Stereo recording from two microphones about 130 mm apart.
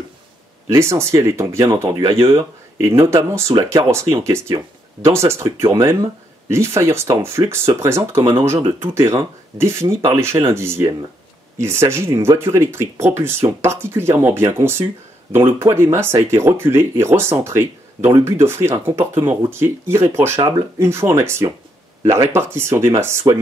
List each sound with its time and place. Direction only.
0.7 s speech: 20° right (ahead or behind)
2.2 s speech: 20° right (ahead or behind)